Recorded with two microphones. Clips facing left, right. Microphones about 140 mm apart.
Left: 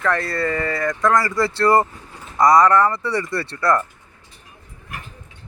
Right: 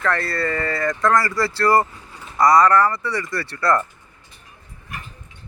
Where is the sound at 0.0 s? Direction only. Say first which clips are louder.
Left 1 dB; 15° left (ahead or behind).